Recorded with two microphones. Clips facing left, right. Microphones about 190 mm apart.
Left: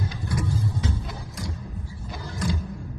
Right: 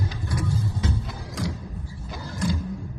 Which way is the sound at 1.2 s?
90° right.